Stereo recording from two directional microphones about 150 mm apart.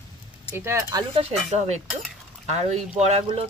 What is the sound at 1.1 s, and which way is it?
Speech, 50° right (ahead or behind).